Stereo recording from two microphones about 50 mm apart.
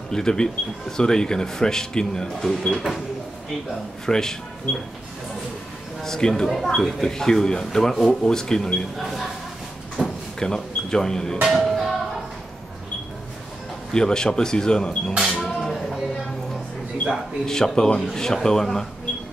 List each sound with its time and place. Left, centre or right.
0.1 s speech: centre
2.7 s speech: centre
4.0 s speech: centre
6.0 s speech: centre
9.0 s speech: centre
10.0 s drawer open or close: centre
10.4 s speech: centre
11.4 s music: centre
13.9 s speech: centre
15.3 s a sound: centre
17.5 s speech: centre